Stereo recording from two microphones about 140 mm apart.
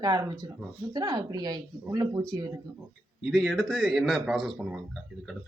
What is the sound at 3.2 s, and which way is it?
A man's voice, centre (ahead or behind).